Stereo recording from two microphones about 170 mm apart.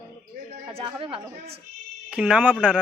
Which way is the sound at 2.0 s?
5° right (ahead or behind).